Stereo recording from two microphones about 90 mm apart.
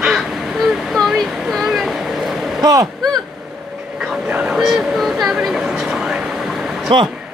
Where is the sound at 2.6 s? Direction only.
50° right (ahead or behind).